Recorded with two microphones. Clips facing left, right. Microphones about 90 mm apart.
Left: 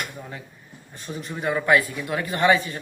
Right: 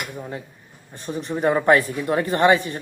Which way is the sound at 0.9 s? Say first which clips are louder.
Right 6 dB; 25° right (ahead or behind).